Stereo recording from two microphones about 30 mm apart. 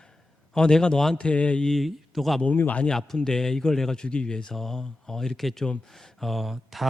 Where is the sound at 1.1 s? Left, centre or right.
Left.